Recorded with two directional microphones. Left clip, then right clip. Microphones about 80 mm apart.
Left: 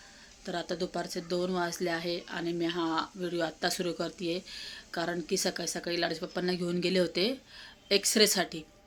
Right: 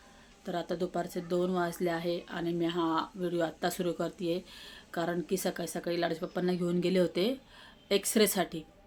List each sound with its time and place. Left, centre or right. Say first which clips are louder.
0.4 s speech: even; centre